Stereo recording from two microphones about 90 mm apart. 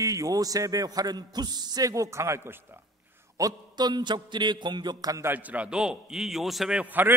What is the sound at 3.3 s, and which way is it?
A man's voice, 45° right (ahead or behind).